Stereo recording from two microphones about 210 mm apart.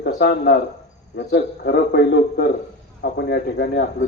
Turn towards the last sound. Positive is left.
turn(degrees=50)  # may be behind; listen again after turning